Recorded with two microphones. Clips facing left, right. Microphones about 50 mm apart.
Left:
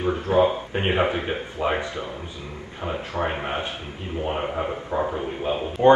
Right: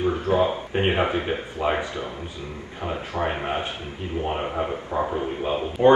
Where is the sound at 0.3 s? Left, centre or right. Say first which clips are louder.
Left 2 dB; right.